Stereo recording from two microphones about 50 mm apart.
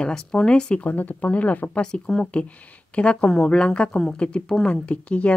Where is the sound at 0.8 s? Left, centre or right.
Left.